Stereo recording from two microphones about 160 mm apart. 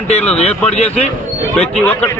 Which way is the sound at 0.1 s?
40° left (ahead or behind).